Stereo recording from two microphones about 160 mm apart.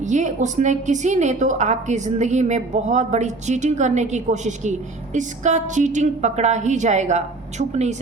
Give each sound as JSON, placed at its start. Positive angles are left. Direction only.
{"t": 0.0, "sound": "a woman's voice", "side_deg": -50}